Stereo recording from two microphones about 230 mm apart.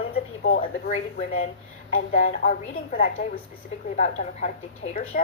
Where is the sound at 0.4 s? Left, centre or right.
Left.